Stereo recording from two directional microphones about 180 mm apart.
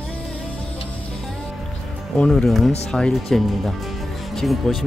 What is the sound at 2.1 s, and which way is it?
Speech, 5° left (ahead or behind).